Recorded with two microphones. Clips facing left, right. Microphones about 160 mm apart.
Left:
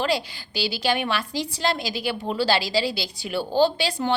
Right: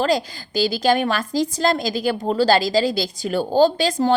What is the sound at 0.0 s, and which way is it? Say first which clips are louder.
A woman's voice: right 5 dB; 40° right (ahead or behind).